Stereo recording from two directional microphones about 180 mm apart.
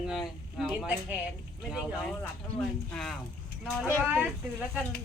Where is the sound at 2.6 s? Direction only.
5° left (ahead or behind).